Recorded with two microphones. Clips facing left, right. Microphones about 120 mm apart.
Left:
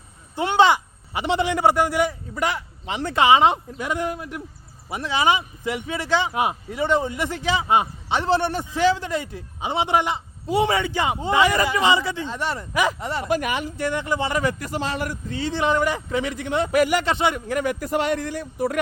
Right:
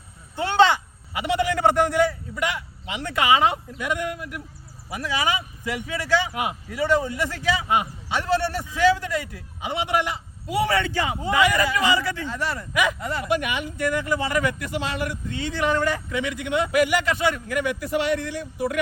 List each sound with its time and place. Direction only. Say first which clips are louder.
0.3 s speech: left 1 dB; 15° left (ahead or behind)
1.1 s speech: left 1 dB; 25° left (ahead or behind)
1.5 s a man's voice: right 1 dB; 5° left (ahead or behind)
2.3 s speech: left 2 dB; 35° left (ahead or behind)
13.2 s speech: left 2 dB; 40° left (ahead or behind); by 16.0 s 15° left (ahead or behind)
16.1 s speech: left 1 dB; 35° left (ahead or behind)
17.2 s speech: left 1 dB; 20° left (ahead or behind)
17.5 s speech: left 1 dB; 40° left (ahead or behind)